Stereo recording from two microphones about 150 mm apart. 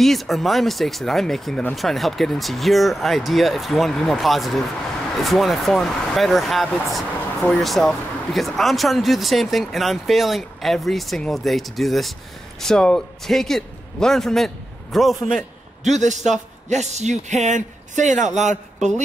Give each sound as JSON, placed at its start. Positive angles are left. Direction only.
{"t": 0.0, "sound": "speech", "side_deg": 0}
{"t": 15.8, "sound": "a man's voice", "side_deg": -50}